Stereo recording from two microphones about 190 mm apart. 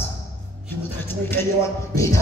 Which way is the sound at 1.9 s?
15° left (ahead or behind).